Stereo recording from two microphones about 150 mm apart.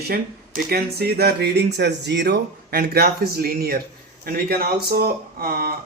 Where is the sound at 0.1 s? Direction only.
80° right.